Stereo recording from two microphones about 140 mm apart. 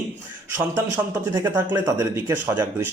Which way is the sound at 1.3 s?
20° right (ahead or behind).